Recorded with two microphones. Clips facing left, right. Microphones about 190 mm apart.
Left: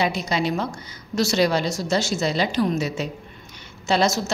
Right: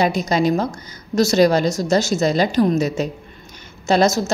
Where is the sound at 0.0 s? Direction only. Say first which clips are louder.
Right 5 dB; 45° right (ahead or behind).